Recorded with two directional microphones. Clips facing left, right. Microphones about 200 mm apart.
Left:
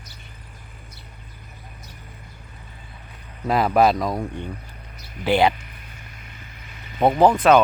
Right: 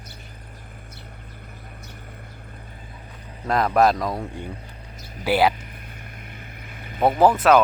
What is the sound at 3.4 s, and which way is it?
Speech, 5° left (ahead or behind).